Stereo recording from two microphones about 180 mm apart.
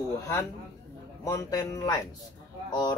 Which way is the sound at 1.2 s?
20° left (ahead or behind).